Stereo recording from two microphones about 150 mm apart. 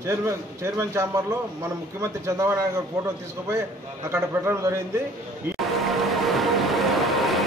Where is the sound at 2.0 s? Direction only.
20° right (ahead or behind).